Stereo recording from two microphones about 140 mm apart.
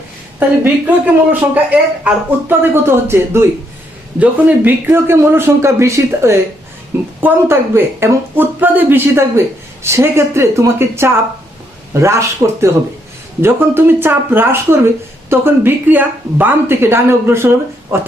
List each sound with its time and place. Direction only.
0.3 s speech: 15° right (ahead or behind)